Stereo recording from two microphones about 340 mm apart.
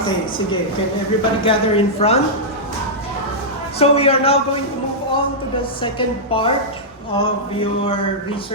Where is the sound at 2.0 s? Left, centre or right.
Centre.